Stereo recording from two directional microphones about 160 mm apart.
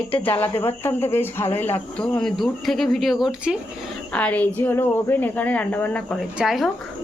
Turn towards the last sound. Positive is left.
turn(degrees=0)  # may be behind; listen again after turning